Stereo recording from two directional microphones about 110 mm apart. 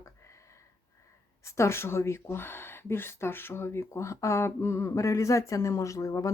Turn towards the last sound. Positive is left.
turn(degrees=30)  # may be behind; listen again after turning